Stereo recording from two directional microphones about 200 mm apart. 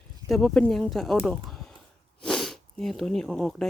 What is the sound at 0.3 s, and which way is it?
Speech, centre (ahead or behind).